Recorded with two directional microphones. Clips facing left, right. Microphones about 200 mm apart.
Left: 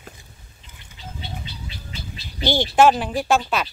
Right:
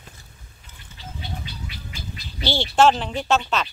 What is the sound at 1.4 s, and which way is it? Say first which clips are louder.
Bird: even; 25° left (ahead or behind).